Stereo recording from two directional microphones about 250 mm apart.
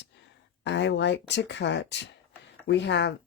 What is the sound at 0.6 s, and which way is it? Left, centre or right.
Speech, left.